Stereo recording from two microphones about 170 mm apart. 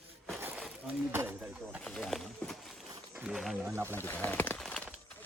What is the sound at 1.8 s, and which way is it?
Run, centre (ahead or behind).